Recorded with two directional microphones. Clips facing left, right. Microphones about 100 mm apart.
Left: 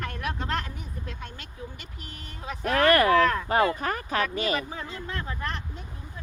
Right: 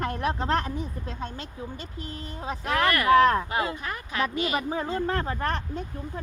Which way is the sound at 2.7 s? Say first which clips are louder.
Left 4 dB; 35° left (ahead or behind).